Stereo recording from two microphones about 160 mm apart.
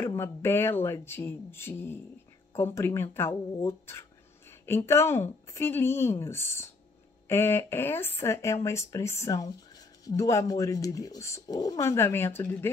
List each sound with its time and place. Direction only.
0.0 s a woman's voice: 15° left (ahead or behind)